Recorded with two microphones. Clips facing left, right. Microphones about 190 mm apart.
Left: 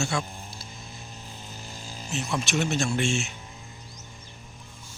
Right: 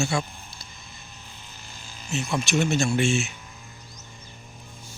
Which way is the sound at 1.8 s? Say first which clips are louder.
Left 4 dB; 35° left (ahead or behind).